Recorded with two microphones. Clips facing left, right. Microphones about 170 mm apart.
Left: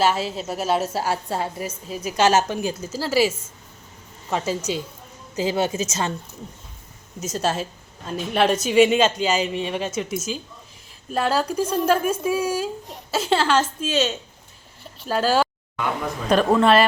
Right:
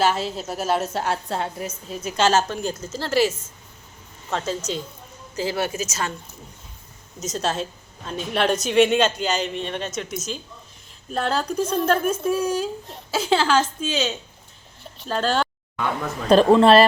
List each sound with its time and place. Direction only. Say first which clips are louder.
0.0 s a woman's voice: left 1 dB; 5° left (ahead or behind)
5.4 s a woman's voice: left 3 dB; 20° left (ahead or behind)
7.2 s a woman's voice: left 1 dB; 5° left (ahead or behind)
16.3 s speech: right 4 dB; 30° right (ahead or behind)